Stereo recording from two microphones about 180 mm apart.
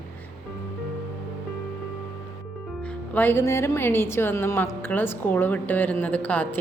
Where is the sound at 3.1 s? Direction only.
10° left (ahead or behind).